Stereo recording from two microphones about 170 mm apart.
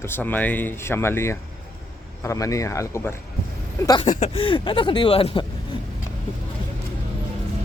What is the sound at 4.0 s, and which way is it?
Speech, 40° left (ahead or behind).